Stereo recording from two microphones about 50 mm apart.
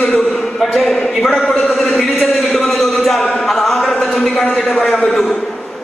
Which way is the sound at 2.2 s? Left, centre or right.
Centre.